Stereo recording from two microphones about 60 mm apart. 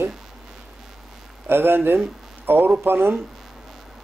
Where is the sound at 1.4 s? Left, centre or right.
Right.